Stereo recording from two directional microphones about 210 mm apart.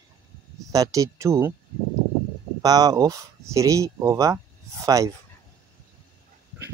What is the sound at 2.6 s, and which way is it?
Speech, 15° right (ahead or behind).